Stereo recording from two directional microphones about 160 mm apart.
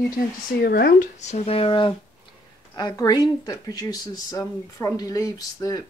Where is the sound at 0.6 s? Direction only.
80° left.